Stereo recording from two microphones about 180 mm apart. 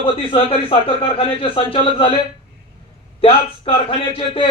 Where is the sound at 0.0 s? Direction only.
30° left (ahead or behind).